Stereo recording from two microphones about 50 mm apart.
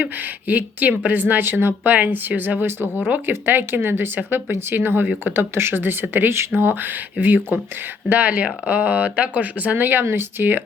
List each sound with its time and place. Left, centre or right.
0.0 s speech: right